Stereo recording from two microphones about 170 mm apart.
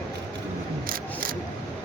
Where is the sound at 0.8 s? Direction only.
55° right (ahead or behind).